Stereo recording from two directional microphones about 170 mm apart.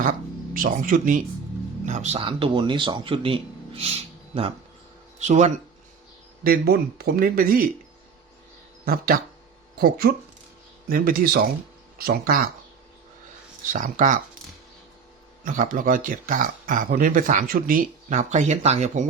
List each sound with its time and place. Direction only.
0.0 s speech: 50° right (ahead or behind)
1.9 s speech: 40° right (ahead or behind)
6.4 s speech: 65° right (ahead or behind)
8.8 s speech: 60° right (ahead or behind)
13.7 s speech: 50° right (ahead or behind)
15.4 s speech: 50° right (ahead or behind)